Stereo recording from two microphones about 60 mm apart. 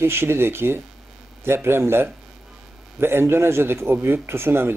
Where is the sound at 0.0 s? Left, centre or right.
Right.